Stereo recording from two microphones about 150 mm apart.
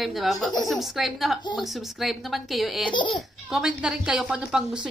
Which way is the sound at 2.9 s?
30° left (ahead or behind).